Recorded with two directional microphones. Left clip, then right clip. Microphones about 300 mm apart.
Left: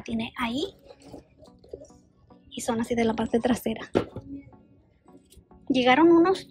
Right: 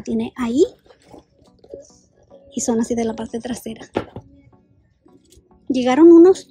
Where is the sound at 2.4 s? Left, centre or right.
Centre.